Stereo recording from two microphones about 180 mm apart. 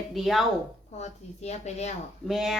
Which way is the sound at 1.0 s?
40° left (ahead or behind).